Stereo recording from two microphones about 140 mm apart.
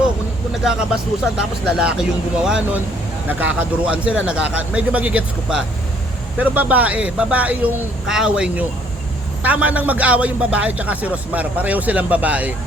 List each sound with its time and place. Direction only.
1.4 s a man's voice: 5° right (ahead or behind)